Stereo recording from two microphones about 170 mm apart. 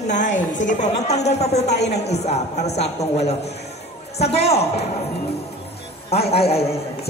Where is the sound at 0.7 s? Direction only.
40° left (ahead or behind).